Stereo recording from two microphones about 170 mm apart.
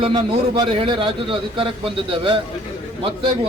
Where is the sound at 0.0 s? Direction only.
25° right (ahead or behind).